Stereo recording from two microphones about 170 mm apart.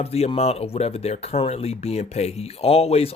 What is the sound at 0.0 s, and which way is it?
Speech, 35° left (ahead or behind).